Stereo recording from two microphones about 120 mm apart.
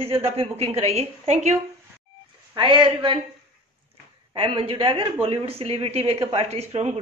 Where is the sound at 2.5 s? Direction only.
45° right (ahead or behind).